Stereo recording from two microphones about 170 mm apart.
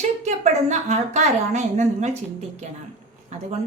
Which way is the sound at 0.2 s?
45° right (ahead or behind).